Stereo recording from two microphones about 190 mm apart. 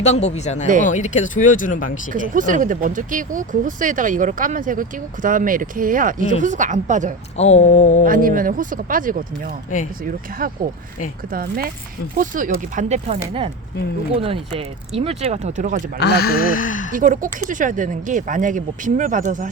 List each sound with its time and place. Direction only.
0.0 s speech: 35° left (ahead or behind)
2.1 s speech: 45° right (ahead or behind)
7.3 s speech: 35° left (ahead or behind)
8.0 s speech: 45° right (ahead or behind)
16.0 s speech: 55° left (ahead or behind)
16.9 s speech: 45° right (ahead or behind)